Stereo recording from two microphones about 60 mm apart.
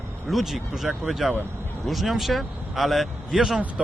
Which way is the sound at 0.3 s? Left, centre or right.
Centre.